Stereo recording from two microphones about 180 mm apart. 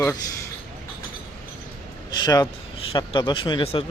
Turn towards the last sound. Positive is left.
turn(degrees=30)  # may be behind; listen again after turning